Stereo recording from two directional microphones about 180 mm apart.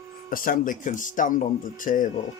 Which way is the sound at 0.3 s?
50° left (ahead or behind).